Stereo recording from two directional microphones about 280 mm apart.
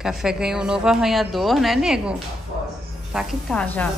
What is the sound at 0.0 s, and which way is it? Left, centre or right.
Speech, centre.